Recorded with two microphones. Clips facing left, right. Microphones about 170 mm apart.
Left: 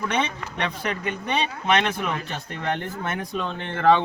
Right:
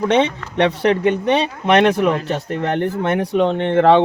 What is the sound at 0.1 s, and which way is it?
Speech, 70° right (ahead or behind).